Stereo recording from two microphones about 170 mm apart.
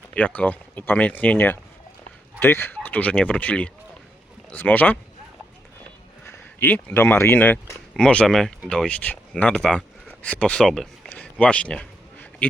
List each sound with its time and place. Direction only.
0.1 s speech: 10° left (ahead or behind)
6.2 s speech: 10° left (ahead or behind)